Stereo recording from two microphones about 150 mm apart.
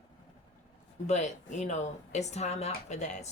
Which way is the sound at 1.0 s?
50° left (ahead or behind).